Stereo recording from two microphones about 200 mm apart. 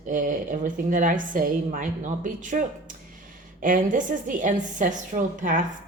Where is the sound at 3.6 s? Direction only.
40° right (ahead or behind).